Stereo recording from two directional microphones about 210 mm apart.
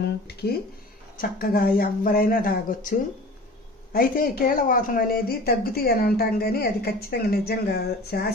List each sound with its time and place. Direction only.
0.0 s speech: 50° left (ahead or behind)
3.9 s speech: 45° left (ahead or behind)